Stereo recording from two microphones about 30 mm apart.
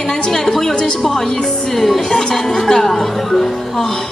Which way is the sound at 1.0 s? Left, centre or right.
Centre.